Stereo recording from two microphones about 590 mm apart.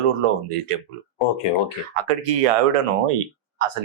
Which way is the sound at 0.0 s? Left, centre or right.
Right.